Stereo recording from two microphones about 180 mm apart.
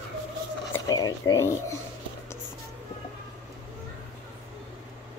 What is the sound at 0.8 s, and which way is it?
Speech, 20° left (ahead or behind).